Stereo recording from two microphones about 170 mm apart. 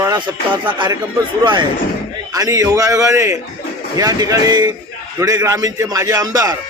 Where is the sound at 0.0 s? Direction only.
15° right (ahead or behind).